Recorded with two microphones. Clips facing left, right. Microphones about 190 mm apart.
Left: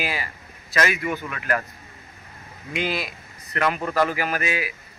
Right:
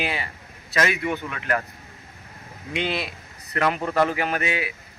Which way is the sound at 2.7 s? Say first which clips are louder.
Even; 30° right (ahead or behind).